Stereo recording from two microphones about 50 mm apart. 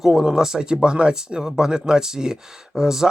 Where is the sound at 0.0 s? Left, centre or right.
Centre.